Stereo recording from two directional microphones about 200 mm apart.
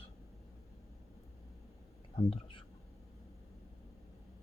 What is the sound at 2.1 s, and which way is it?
Whispering, 25° left (ahead or behind).